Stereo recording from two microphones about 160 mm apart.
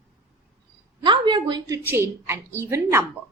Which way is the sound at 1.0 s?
30° right (ahead or behind).